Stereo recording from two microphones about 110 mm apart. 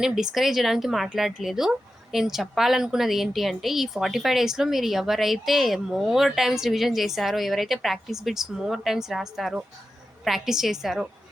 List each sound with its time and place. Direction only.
0.0 s a woman's voice: 5° right (ahead or behind)